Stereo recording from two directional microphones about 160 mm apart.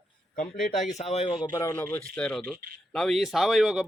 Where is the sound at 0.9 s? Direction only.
45° left (ahead or behind).